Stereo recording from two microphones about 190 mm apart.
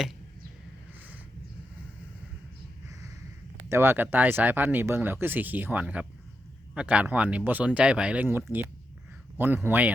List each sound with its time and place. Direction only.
3.7 s speech: 10° right (ahead or behind)
9.6 s speech: 10° right (ahead or behind)